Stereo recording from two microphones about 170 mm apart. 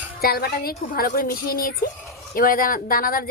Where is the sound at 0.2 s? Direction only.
60° left (ahead or behind).